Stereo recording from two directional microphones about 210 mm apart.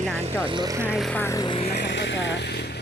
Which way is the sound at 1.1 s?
10° left (ahead or behind).